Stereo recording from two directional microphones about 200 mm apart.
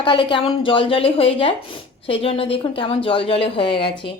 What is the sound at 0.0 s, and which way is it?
A woman's voice, 25° left (ahead or behind).